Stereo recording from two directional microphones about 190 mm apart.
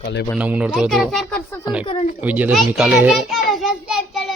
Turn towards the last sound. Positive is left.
turn(degrees=0)  # may be behind; listen again after turning